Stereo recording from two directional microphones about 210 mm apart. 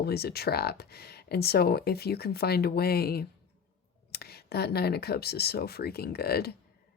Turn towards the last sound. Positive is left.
turn(degrees=50)  # may be behind; listen again after turning